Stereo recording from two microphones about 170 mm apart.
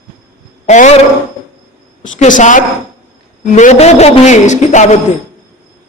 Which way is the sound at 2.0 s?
50° left (ahead or behind).